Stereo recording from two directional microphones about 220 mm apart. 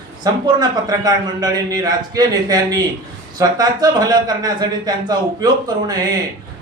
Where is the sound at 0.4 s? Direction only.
20° right (ahead or behind).